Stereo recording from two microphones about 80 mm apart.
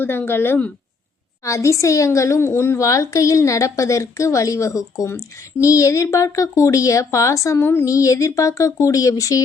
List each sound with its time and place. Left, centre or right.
0.0 s speech: left
1.5 s a woman's voice: left